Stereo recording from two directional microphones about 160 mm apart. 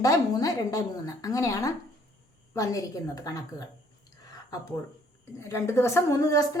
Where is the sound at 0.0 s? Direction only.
20° left (ahead or behind).